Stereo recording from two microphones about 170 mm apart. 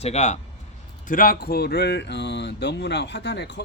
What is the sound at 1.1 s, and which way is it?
Speech, 55° left (ahead or behind).